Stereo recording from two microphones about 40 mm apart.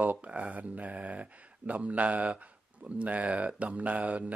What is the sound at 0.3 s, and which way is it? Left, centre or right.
Speech, right.